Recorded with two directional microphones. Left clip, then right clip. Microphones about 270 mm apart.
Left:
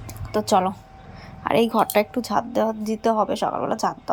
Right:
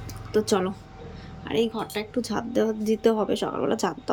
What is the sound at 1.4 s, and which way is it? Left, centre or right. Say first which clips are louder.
A woman's voice: left 7 dB; centre.